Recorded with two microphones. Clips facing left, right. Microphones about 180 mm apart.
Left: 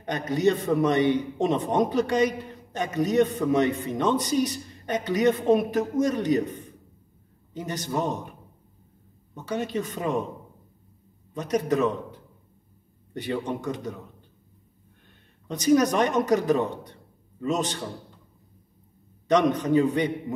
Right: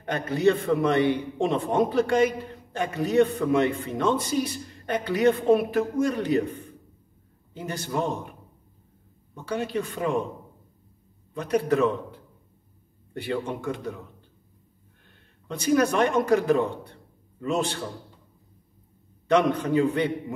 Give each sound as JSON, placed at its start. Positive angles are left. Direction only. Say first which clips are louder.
{"t": 0.0, "sound": "a man's voice", "louder": "right 1 dB", "side_deg": 20}
{"t": 7.6, "sound": "a man's voice", "louder": "even", "side_deg": 20}
{"t": 9.3, "sound": "a man's voice", "louder": "even", "side_deg": 20}
{"t": 11.3, "sound": "a man's voice", "louder": "right 1 dB", "side_deg": 20}
{"t": 13.1, "sound": "a man's voice", "louder": "even", "side_deg": 20}
{"t": 15.4, "sound": "a man's voice", "louder": "left 2 dB", "side_deg": 20}
{"t": 19.5, "sound": "a man's voice", "louder": "left 1 dB", "side_deg": 20}